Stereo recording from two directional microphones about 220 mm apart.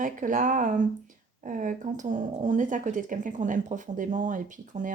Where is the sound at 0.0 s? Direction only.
35° right (ahead or behind).